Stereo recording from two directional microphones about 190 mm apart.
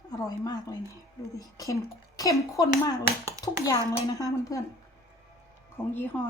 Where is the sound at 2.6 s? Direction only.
20° left (ahead or behind).